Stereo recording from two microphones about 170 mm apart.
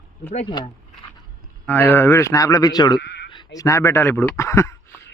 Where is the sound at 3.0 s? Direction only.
90° left.